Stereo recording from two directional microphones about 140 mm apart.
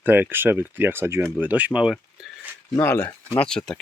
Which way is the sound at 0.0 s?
15° right (ahead or behind).